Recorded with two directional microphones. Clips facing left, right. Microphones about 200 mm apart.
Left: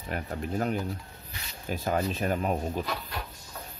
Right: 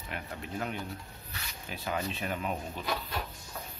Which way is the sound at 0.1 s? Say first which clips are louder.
Left 7 dB; 45° left (ahead or behind).